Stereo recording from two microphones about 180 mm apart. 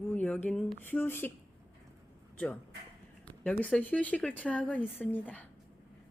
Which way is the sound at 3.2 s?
5° left (ahead or behind).